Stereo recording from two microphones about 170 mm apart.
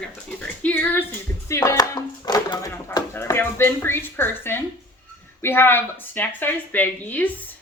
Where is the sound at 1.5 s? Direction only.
15° left (ahead or behind).